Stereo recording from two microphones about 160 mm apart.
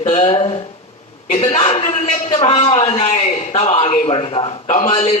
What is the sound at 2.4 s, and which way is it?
A man's voice, 35° left (ahead or behind).